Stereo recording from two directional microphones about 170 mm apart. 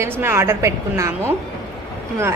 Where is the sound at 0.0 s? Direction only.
15° right (ahead or behind).